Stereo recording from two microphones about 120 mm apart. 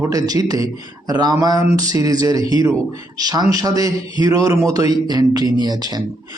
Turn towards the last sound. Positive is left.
turn(degrees=-35)  # may be behind; listen again after turning